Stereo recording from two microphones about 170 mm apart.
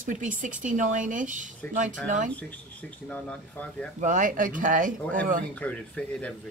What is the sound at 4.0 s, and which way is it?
Speech, 50° right (ahead or behind).